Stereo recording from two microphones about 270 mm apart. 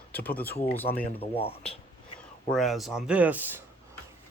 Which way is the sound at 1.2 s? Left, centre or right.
Left.